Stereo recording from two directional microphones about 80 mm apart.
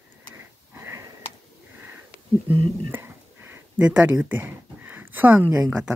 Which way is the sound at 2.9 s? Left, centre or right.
Right.